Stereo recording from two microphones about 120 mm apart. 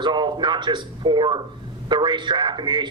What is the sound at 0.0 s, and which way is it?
A man's voice, 40° right (ahead or behind).